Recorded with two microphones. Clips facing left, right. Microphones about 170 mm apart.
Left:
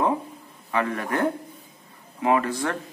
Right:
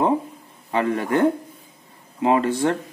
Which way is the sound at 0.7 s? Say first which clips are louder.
Right 4 dB; 30° right (ahead or behind).